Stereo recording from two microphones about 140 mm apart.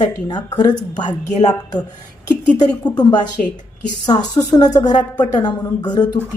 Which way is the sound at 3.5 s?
65° left (ahead or behind).